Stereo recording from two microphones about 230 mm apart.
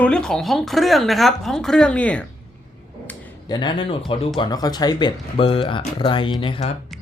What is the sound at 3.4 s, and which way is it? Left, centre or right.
Speech, centre.